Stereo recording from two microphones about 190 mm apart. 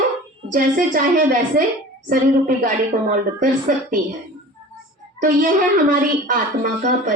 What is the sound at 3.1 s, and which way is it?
Speech, 50° right (ahead or behind).